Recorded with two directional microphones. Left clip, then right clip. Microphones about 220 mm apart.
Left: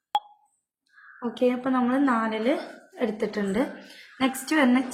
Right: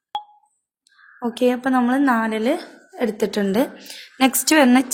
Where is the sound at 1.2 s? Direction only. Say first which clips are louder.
Right 5 dB; 50° right (ahead or behind).